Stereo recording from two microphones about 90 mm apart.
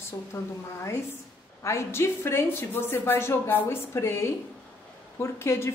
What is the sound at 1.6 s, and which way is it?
A woman's voice, 30° left (ahead or behind).